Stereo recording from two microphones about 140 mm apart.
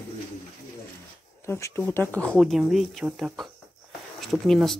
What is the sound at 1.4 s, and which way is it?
Speech, 20° left (ahead or behind).